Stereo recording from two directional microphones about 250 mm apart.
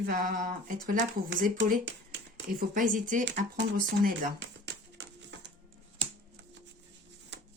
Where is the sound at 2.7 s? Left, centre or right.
Right.